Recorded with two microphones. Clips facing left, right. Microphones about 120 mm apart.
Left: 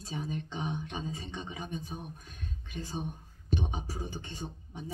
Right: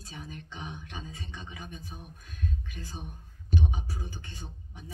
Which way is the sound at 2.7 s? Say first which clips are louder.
Left 6 dB; 25° left (ahead or behind).